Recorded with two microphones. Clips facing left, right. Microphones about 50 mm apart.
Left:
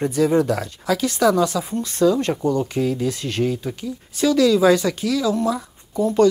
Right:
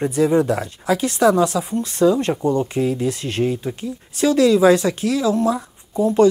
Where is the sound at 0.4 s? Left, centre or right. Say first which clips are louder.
Right 1 dB; right.